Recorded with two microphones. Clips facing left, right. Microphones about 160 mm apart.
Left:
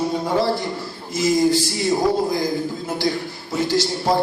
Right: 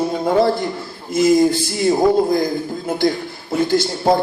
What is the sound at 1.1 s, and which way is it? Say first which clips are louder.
Speech: right 4 dB; 55° right (ahead or behind).